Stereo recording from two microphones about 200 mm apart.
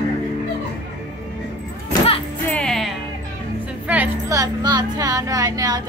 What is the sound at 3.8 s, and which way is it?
Music, 10° right (ahead or behind).